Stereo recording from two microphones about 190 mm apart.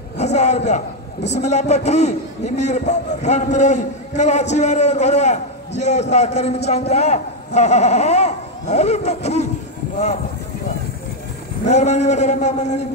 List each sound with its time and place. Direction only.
0.2 s a man's voice: 35° left (ahead or behind)
11.6 s a man's voice: 35° left (ahead or behind)